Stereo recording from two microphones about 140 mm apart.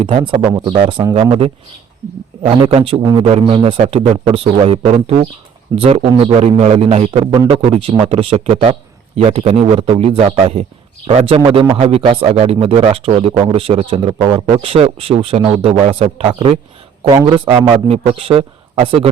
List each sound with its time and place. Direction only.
0.0 s a man's voice: 40° right (ahead or behind)
2.6 s a man's voice: 45° right (ahead or behind)
3.0 s speech: 30° right (ahead or behind)
3.2 s a man's voice: 45° right (ahead or behind)